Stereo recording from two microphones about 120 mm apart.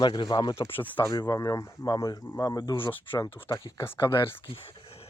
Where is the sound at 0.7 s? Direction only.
15° left (ahead or behind); by 2.9 s 40° left (ahead or behind).